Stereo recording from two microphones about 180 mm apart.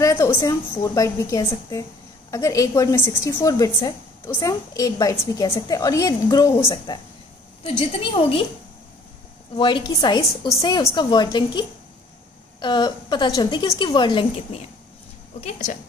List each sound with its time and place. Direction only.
0.0 s a woman's voice: 15° left (ahead or behind)
9.6 s a woman's voice: 25° left (ahead or behind)
15.4 s speech: 45° left (ahead or behind)